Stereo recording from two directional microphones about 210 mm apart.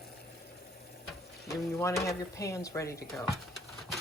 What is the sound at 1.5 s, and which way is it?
Speech, 15° left (ahead or behind).